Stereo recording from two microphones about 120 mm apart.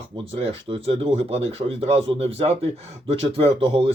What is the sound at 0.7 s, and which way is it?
Speech, 50° right (ahead or behind).